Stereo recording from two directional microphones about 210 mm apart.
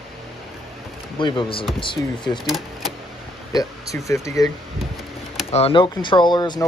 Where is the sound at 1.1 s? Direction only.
25° left (ahead or behind).